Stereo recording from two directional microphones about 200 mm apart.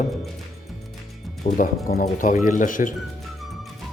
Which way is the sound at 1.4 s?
40° left (ahead or behind).